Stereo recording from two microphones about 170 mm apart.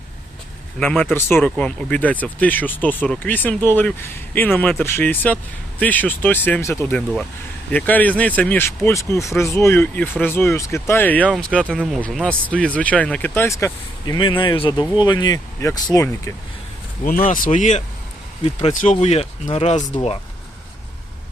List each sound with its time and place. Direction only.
0.8 s speech: 10° left (ahead or behind)
14.2 s speech: 30° left (ahead or behind)
17.0 s speech: 55° left (ahead or behind)